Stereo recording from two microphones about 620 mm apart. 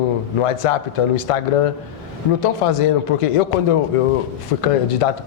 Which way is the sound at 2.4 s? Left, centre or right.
Left.